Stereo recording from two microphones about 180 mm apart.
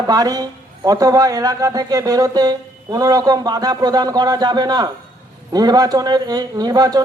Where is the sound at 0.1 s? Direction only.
20° right (ahead or behind).